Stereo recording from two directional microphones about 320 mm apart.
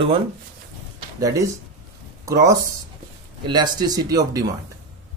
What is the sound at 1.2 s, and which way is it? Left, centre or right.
Speech, centre.